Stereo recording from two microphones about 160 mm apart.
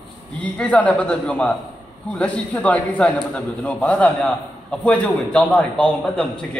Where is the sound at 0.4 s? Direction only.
10° left (ahead or behind).